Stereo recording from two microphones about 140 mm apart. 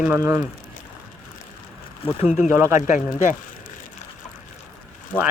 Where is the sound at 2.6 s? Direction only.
20° right (ahead or behind).